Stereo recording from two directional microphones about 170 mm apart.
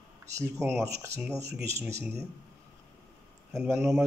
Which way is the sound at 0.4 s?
15° right (ahead or behind).